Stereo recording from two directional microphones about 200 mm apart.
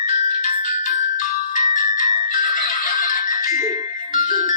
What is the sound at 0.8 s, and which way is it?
Music, 40° left (ahead or behind).